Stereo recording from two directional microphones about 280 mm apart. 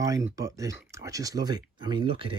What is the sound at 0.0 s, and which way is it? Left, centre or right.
A man's voice, centre.